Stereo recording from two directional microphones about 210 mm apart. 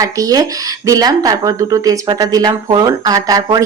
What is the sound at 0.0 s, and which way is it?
Speech, 15° right (ahead or behind).